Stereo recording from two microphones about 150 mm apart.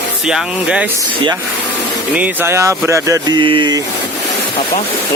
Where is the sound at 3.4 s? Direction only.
35° right (ahead or behind).